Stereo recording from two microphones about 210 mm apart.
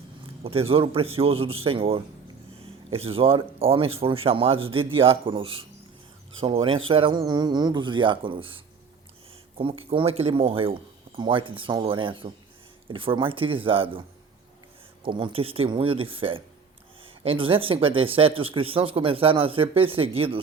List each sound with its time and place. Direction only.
0.4 s speech: 25° right (ahead or behind)
15.0 s speech: 25° right (ahead or behind)